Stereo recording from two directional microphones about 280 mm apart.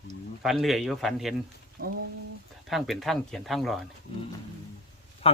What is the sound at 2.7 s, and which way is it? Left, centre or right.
Speech, centre.